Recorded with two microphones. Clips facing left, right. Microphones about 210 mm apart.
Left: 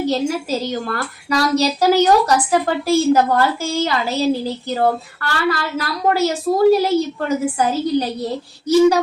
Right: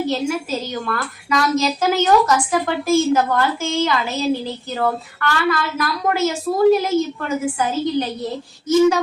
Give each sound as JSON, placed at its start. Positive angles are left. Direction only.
{"t": 0.1, "sound": "a woman's voice", "side_deg": 35}